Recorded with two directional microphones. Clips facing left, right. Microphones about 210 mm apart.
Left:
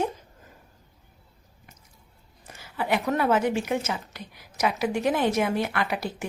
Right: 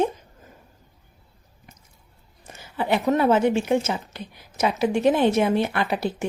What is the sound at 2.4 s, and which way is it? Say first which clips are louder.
A woman's voice: right 3 dB; 25° right (ahead or behind).